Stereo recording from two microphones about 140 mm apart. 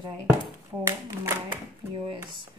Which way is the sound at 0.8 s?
15° right (ahead or behind).